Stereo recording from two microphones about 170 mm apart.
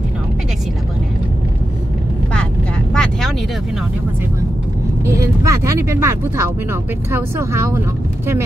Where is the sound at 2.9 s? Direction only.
Centre (ahead or behind).